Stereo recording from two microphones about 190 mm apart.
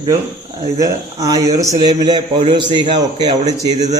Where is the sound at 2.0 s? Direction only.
25° right (ahead or behind).